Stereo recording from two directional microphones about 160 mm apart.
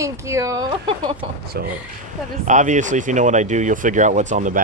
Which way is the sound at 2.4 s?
50° right (ahead or behind).